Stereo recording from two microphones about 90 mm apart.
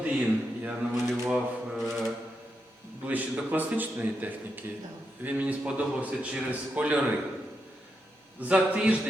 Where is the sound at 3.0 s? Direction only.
20° right (ahead or behind).